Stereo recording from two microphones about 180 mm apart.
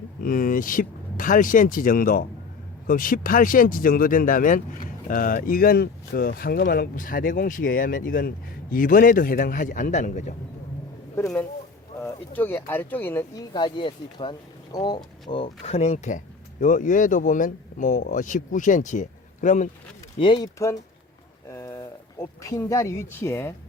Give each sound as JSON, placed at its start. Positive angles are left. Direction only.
{"t": 0.2, "sound": "speech", "side_deg": 50}
{"t": 11.9, "sound": "speech", "side_deg": 10}
{"t": 13.5, "sound": "speech", "side_deg": 25}
{"t": 20.1, "sound": "speech", "side_deg": 30}
{"t": 21.5, "sound": "speech", "side_deg": 15}